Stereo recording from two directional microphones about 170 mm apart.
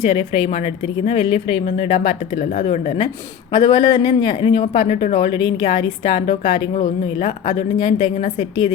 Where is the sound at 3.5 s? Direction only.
25° left (ahead or behind).